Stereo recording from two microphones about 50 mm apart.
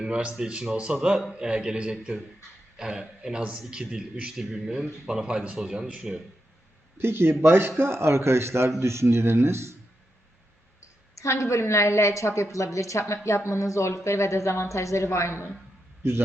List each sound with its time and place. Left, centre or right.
0.0 s speech: right
7.0 s speech: right
11.1 s a woman's voice: left